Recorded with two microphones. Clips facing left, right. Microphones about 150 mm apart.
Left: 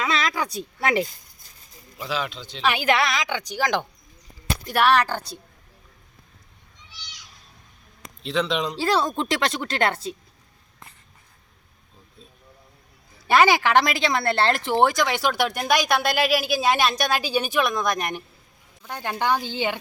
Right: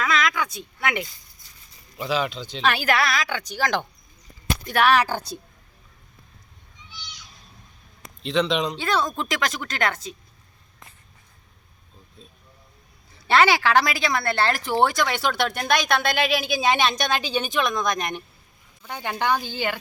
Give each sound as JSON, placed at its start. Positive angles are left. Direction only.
{"t": 0.0, "sound": "speech", "side_deg": 30}
{"t": 2.0, "sound": "speech", "side_deg": 0}
{"t": 2.6, "sound": "speech", "side_deg": 20}
{"t": 4.7, "sound": "speech", "side_deg": 0}
{"t": 6.7, "sound": "a sound", "side_deg": 80}
{"t": 8.2, "sound": "speech", "side_deg": 5}
{"t": 8.8, "sound": "a woman's voice", "side_deg": 30}
{"t": 13.2, "sound": "speech", "side_deg": 15}
{"t": 19.5, "sound": "a woman's voice", "side_deg": 20}